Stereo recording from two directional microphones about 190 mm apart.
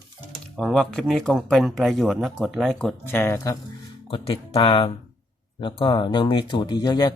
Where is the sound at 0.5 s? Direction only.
Centre (ahead or behind).